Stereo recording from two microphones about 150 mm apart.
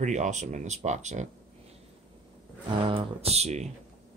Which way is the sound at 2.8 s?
40° right (ahead or behind).